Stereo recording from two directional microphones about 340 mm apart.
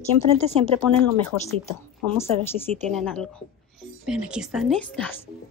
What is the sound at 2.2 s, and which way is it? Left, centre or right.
Speech, centre.